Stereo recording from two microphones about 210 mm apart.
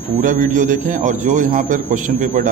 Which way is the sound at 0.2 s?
40° right (ahead or behind).